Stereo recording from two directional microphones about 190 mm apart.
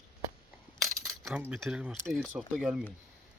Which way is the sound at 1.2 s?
5° right (ahead or behind).